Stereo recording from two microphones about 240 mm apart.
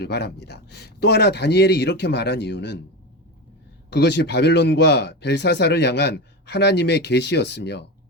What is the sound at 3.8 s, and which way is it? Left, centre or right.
A man's voice, left.